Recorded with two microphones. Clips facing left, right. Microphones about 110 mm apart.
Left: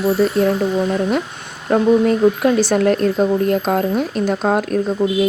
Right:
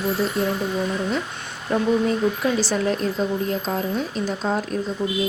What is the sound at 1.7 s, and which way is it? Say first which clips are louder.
Speech: left 7 dB; 60° left (ahead or behind).